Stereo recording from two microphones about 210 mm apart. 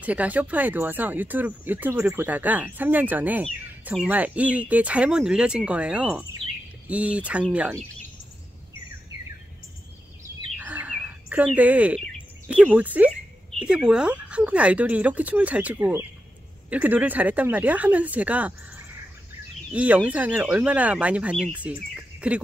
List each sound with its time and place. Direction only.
0.0 s speech: 5° right (ahead or behind)
10.6 s bird: 10° right (ahead or behind)
12.7 s speech: 5° right (ahead or behind)